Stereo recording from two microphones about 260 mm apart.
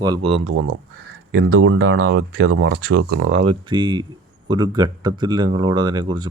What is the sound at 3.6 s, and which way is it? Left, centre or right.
Speech, centre.